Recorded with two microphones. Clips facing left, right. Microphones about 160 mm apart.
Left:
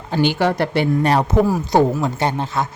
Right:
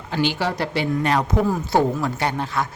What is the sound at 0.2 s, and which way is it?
Speech, 55° left (ahead or behind).